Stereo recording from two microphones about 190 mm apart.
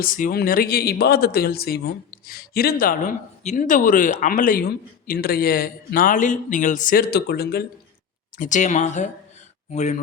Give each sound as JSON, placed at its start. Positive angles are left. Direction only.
{"t": 0.0, "sound": "speech", "side_deg": 45}
{"t": 8.4, "sound": "speech", "side_deg": 40}